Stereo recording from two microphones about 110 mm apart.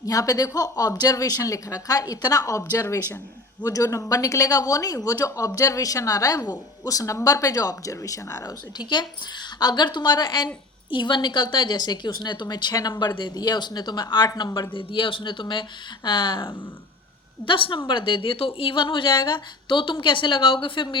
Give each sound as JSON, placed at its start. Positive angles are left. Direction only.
{"t": 0.0, "sound": "speech", "side_deg": 35}
{"t": 8.8, "sound": "a woman's voice", "side_deg": 40}
{"t": 14.7, "sound": "a woman's voice", "side_deg": 50}